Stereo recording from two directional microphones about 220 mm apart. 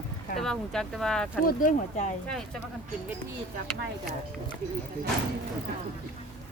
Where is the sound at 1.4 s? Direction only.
40° left (ahead or behind).